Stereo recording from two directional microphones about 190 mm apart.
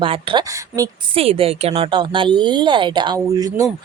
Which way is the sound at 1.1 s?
30° right (ahead or behind).